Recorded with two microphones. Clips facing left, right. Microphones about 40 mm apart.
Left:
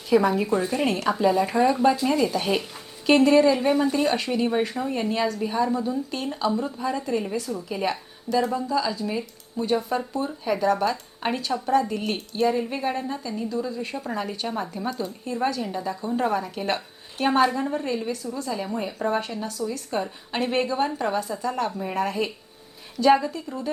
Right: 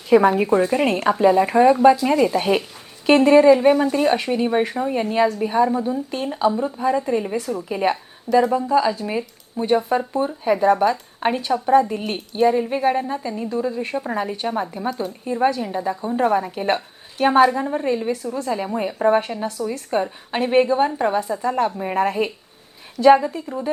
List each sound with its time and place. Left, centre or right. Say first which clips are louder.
0.1 s a woman's voice: right 6 dB; right; by 7.3 s centre
7.3 s a woman's voice: right 4 dB; right
7.7 s a woman's voice: right 7 dB; right
17.3 s speech: right 5 dB; centre
18.2 s a woman's voice: right 5 dB; right; by 23.6 s centre